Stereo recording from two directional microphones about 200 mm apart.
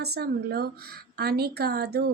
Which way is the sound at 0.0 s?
55° right (ahead or behind).